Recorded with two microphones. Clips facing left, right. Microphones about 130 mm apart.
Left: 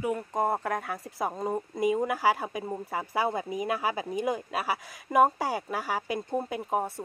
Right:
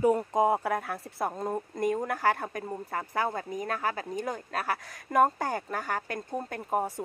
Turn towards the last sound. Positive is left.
turn(degrees=10)  # may be behind; listen again after turning